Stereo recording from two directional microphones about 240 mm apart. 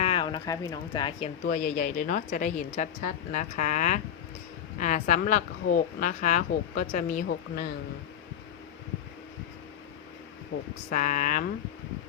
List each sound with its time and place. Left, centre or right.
0.0 s speech: left
1.5 s speech: left
10.8 s speech: left